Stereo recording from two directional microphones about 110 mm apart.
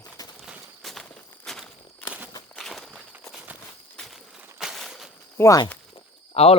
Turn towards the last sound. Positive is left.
turn(degrees=65)  # may be behind; listen again after turning